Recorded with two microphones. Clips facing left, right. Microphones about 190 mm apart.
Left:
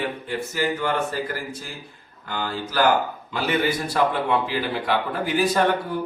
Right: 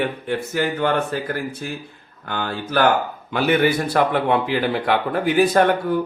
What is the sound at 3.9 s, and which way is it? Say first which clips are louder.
Speech: right 1 dB; 60° right (ahead or behind).